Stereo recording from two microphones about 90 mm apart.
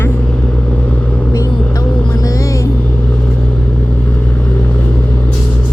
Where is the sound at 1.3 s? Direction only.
40° left (ahead or behind).